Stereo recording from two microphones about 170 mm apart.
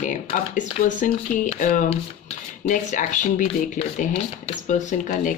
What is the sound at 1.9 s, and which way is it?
Speech, 35° left (ahead or behind).